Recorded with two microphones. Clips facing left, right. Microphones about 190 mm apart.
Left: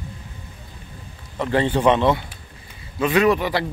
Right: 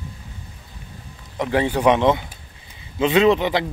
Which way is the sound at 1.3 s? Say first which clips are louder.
Even; 10° right (ahead or behind).